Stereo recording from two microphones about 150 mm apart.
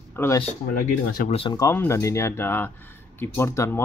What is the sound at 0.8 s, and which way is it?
Speech, 70° left (ahead or behind).